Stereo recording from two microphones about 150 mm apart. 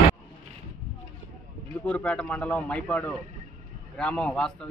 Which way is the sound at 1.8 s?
10° left (ahead or behind).